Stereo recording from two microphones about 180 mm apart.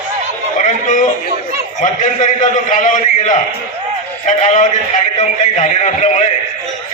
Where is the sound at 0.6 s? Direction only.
45° left (ahead or behind).